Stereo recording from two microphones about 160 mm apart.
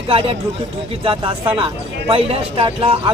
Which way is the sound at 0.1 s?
35° right (ahead or behind).